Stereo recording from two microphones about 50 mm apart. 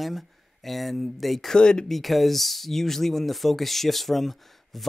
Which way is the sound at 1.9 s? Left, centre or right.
Centre.